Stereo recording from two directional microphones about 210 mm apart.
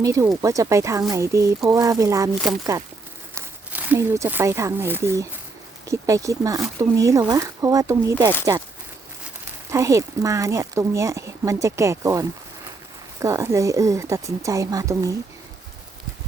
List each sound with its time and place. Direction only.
0.0 s speech: 15° right (ahead or behind)
3.3 s speech: 10° right (ahead or behind)
9.6 s speech: 15° right (ahead or behind)
13.2 s speech: 15° right (ahead or behind)